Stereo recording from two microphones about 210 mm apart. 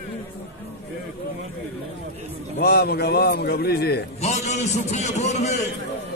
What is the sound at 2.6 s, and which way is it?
A man's voice, 50° left (ahead or behind).